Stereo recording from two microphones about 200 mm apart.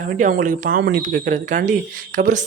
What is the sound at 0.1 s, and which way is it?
Speech, 40° right (ahead or behind).